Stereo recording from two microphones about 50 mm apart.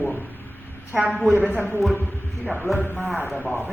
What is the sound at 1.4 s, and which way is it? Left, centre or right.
A man's voice, right.